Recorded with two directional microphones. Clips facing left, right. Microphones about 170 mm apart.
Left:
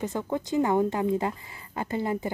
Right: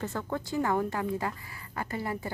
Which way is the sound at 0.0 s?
15° left (ahead or behind).